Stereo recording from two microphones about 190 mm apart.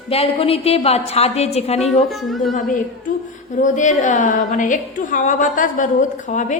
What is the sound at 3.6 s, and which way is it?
A woman's voice, 40° left (ahead or behind).